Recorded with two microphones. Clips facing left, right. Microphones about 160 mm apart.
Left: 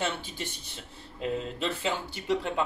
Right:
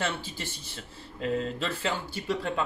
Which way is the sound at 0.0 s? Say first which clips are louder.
Even; 20° left (ahead or behind).